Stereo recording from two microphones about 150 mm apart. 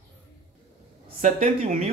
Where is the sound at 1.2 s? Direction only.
55° right (ahead or behind).